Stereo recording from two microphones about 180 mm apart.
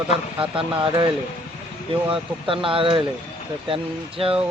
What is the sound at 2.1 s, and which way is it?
Speech, 30° right (ahead or behind).